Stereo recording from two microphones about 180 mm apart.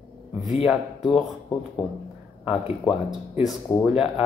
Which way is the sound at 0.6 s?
Centre (ahead or behind).